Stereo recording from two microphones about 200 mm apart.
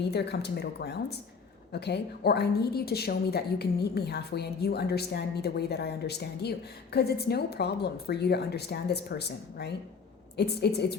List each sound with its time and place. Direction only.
0.1 s a woman's voice: 55° left (ahead or behind)